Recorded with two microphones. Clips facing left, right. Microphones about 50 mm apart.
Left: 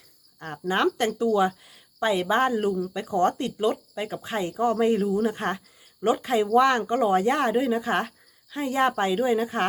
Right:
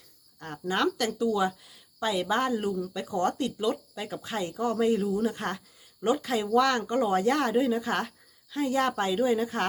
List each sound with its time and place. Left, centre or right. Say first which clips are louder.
0.3 s speech: left 3 dB; left